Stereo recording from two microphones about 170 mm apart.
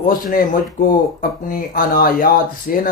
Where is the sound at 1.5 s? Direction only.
55° left (ahead or behind).